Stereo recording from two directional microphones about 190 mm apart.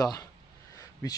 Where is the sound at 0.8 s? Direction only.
20° left (ahead or behind).